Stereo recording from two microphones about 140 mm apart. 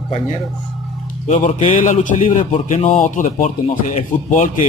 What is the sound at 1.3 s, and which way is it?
Speech, 55° left (ahead or behind).